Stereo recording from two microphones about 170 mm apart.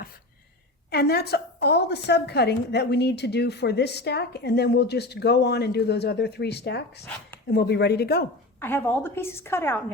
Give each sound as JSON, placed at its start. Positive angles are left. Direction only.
{"t": 0.9, "sound": "a woman's voice", "side_deg": 70}
{"t": 8.6, "sound": "a woman's voice", "side_deg": 10}